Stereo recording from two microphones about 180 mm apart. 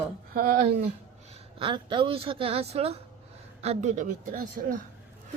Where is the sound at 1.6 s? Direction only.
30° right (ahead or behind); by 4.6 s 50° right (ahead or behind).